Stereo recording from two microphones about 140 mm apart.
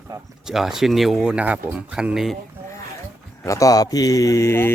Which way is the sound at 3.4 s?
25° left (ahead or behind).